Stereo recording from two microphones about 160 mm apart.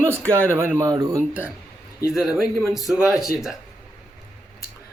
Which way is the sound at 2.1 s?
5° right (ahead or behind).